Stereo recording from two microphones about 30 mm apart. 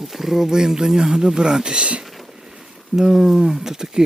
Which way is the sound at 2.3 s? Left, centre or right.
Centre.